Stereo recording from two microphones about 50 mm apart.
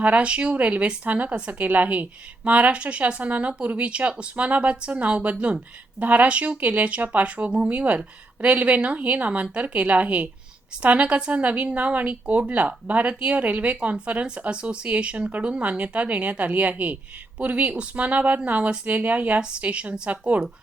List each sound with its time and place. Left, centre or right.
0.0 s speech: right
19.4 s speech: centre